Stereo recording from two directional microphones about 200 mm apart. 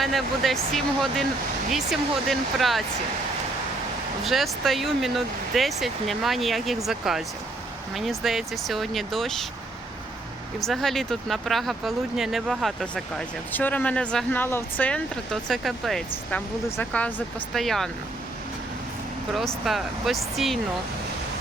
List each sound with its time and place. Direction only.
0.0 s speech: centre (ahead or behind)
4.2 s speech: centre (ahead or behind)
10.6 s speech: centre (ahead or behind)
19.3 s speech: centre (ahead or behind)